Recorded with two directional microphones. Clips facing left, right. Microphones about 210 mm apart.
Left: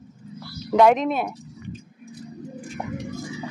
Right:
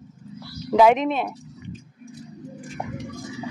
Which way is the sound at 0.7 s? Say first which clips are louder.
Even; 5° right (ahead or behind).